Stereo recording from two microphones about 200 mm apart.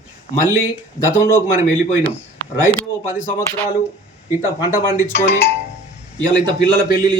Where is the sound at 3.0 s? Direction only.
10° left (ahead or behind).